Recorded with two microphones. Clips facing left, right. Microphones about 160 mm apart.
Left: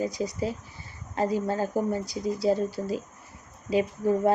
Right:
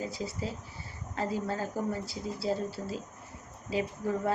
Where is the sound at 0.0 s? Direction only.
15° left (ahead or behind).